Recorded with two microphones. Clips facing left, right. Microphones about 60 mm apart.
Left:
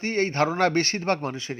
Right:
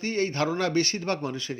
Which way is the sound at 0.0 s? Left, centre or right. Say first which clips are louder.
Left 3 dB; left.